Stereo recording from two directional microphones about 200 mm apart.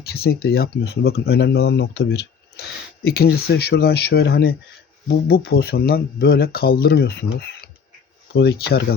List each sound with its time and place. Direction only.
0.0 s speech: 50° left (ahead or behind)